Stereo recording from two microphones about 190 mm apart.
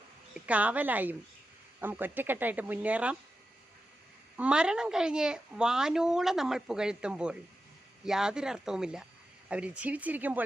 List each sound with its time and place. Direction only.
0.3 s a woman's voice: 5° right (ahead or behind)
4.4 s speech: 5° right (ahead or behind)